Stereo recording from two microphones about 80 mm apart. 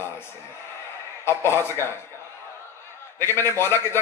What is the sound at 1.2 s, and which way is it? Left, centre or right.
Speech, left.